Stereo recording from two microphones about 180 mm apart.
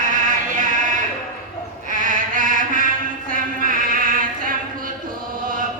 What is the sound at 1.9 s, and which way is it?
Mantra, 45° right (ahead or behind).